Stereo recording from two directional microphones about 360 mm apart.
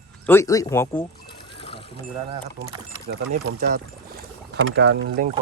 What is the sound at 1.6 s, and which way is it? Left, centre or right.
Vehicle, centre.